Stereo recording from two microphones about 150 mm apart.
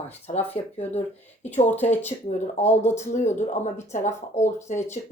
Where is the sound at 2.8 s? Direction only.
50° left (ahead or behind).